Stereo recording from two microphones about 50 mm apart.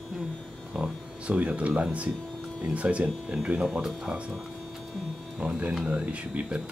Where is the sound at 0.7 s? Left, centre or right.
Centre.